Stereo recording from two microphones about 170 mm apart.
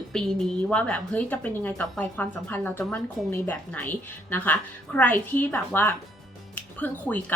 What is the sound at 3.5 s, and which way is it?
Speech, 10° left (ahead or behind).